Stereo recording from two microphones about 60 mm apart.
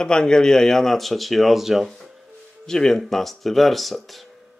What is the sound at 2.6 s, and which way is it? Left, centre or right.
A man's voice, centre.